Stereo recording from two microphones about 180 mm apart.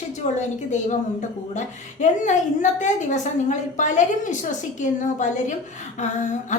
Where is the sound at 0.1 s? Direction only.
40° left (ahead or behind).